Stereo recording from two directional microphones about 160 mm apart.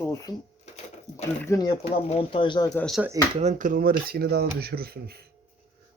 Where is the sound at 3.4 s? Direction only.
55° right (ahead or behind).